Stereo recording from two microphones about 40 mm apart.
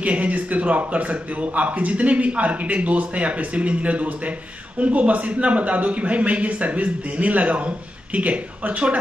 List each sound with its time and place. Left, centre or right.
0.0 s speech: right